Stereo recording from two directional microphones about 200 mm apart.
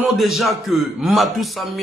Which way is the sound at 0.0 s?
Centre (ahead or behind).